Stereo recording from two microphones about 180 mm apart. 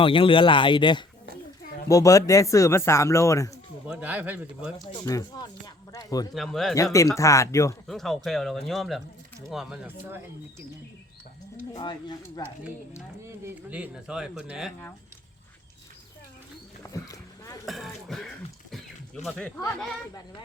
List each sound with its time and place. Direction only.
0.0 s speech: 30° left (ahead or behind)
3.8 s speech: 10° right (ahead or behind)
5.0 s speech: 20° left (ahead or behind)
6.3 s speech: centre (ahead or behind)
7.2 s speech: 15° left (ahead or behind)
7.9 s speech: centre (ahead or behind)
11.5 s speech: 25° left (ahead or behind)
13.2 s speech: 10° right (ahead or behind)
16.8 s boat: 20° left (ahead or behind)
17.7 s speech: centre (ahead or behind)
18.7 s music: 5° left (ahead or behind)